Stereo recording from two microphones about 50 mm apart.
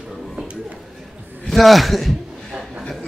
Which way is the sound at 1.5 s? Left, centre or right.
Centre.